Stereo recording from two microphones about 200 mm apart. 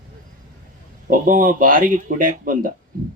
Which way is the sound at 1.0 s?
45° right (ahead or behind).